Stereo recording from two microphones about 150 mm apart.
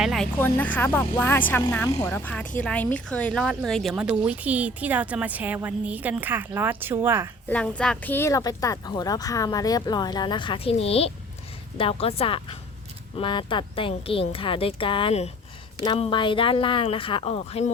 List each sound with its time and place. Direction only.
0.0 s music: centre (ahead or behind)
0.3 s a woman's voice: 10° left (ahead or behind); by 7.3 s 15° right (ahead or behind)
7.5 s a woman's voice: 5° left (ahead or behind); by 17.7 s 40° left (ahead or behind)